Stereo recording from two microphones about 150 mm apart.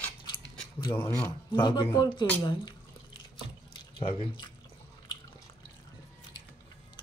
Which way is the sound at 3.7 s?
35° left (ahead or behind).